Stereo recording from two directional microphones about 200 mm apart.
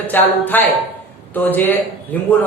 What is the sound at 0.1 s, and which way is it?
A man's voice, 10° left (ahead or behind).